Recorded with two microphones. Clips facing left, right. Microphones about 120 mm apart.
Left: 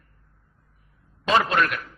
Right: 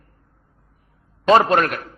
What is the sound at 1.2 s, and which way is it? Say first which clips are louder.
Speech: right 6 dB; 40° right (ahead or behind).